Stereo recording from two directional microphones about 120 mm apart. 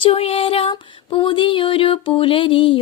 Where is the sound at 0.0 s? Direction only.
55° left (ahead or behind).